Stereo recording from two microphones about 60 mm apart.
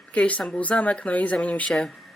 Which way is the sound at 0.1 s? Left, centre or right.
Left.